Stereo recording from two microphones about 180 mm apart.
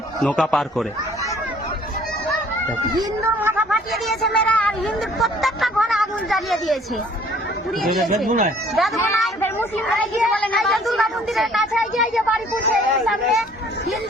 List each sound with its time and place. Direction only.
0.2 s speech: 5° left (ahead or behind)
3.0 s speech: 10° right (ahead or behind)
7.8 s speech: centre (ahead or behind)
8.3 s speech: 45° right (ahead or behind)
9.4 s speech: 10° left (ahead or behind)
9.8 s speech: centre (ahead or behind)